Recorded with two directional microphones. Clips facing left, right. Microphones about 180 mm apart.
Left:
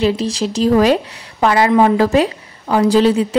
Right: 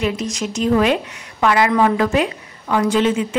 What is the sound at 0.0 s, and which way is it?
Speech, 30° left (ahead or behind).